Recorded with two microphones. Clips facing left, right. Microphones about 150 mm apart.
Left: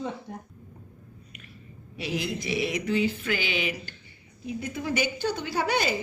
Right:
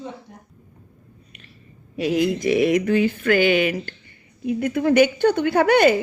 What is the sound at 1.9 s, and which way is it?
Mantra, 50° right (ahead or behind).